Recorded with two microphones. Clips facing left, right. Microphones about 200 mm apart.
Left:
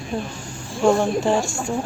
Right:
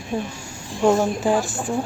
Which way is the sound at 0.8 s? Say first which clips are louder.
Even; 5° right (ahead or behind).